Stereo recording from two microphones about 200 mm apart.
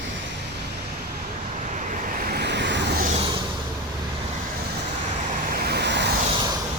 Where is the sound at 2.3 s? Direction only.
55° right (ahead or behind).